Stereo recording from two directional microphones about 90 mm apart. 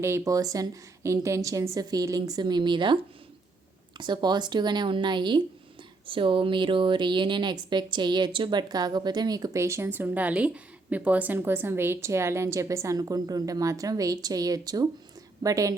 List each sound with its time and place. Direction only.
0.0 s a woman's voice: 35° right (ahead or behind); by 5.4 s 60° right (ahead or behind)
6.1 s a woman's voice: 70° right (ahead or behind); by 9.6 s 45° right (ahead or behind)
9.6 s a woman's voice: 30° right (ahead or behind)